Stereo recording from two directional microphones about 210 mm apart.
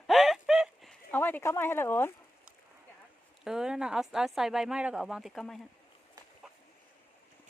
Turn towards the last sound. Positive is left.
turn(degrees=0)  # may be behind; listen again after turning